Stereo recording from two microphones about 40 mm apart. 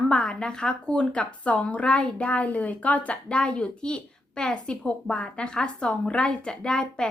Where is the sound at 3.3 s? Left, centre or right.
Left.